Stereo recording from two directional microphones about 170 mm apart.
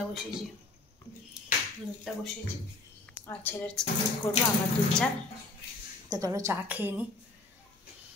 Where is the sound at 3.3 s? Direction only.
10° left (ahead or behind).